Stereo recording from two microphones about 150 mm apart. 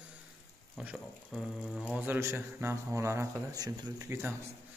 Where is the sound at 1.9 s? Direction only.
10° right (ahead or behind).